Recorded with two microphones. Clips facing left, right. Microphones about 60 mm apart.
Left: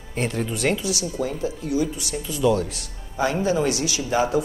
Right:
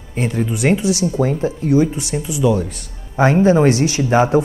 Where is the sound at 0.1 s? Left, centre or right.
Centre.